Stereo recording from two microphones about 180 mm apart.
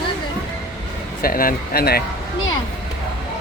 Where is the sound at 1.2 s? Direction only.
55° left (ahead or behind).